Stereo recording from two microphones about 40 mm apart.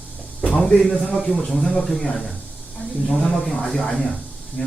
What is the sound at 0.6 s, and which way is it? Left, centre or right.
Speech, centre.